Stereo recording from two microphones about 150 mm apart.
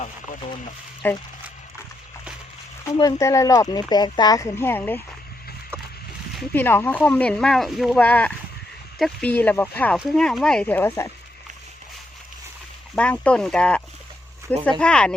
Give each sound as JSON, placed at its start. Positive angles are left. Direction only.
{"t": 1.0, "sound": "speech", "side_deg": 15}
{"t": 3.0, "sound": "speech", "side_deg": 20}
{"t": 6.5, "sound": "speech", "side_deg": 15}
{"t": 13.0, "sound": "speech", "side_deg": 5}